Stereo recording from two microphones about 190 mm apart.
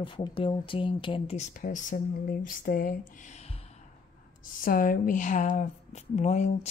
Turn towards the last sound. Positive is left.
turn(degrees=35)  # may be behind; listen again after turning